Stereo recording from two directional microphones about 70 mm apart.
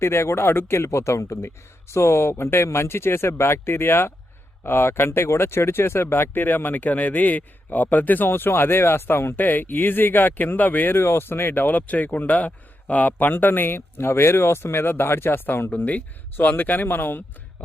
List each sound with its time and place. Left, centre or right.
0.0 s speech: left
15.7 s speech: left